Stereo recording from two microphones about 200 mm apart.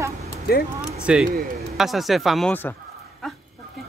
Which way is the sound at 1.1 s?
5° right (ahead or behind).